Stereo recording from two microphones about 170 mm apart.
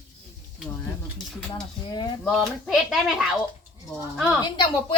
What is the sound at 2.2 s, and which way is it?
A child's voice, centre (ahead or behind).